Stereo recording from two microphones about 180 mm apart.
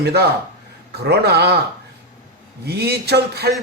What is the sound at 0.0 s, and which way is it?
A man's voice, 65° right (ahead or behind).